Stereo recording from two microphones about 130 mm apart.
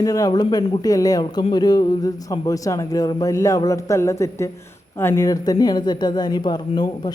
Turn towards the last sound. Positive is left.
turn(degrees=35)  # may be behind; listen again after turning